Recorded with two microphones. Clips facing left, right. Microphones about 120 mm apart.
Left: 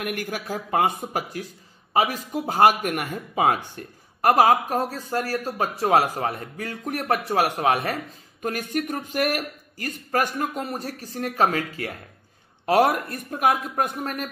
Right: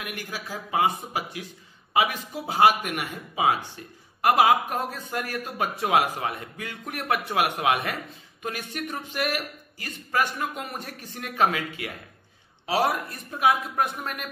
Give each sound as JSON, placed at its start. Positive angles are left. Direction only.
{"t": 0.0, "sound": "a woman's voice", "side_deg": 50}
{"t": 12.6, "sound": "a woman's voice", "side_deg": 55}